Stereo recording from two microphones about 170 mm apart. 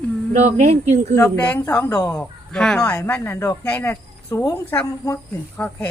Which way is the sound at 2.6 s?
5° left (ahead or behind).